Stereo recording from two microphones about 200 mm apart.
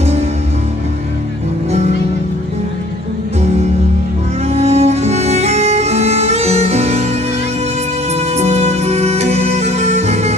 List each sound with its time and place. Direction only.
4.4 s music: 30° right (ahead or behind)
8.1 s music: 35° right (ahead or behind)